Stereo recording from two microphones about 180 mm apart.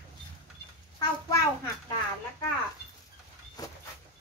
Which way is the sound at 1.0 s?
20° left (ahead or behind).